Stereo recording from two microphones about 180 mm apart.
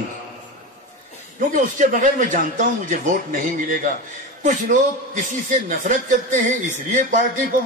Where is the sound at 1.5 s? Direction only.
45° right (ahead or behind).